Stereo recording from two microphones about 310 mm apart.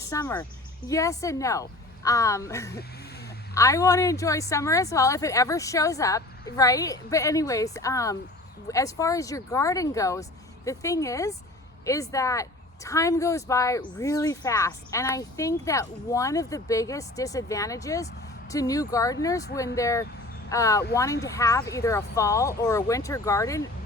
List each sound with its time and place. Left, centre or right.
0.1 s speech: centre
2.7 s a sound: left
3.5 s speech: centre